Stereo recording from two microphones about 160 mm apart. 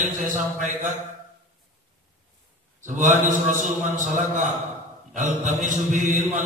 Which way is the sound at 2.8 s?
55° right (ahead or behind).